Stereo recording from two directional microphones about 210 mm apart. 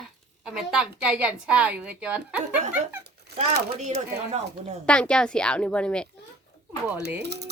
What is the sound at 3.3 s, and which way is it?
Speech, 50° right (ahead or behind).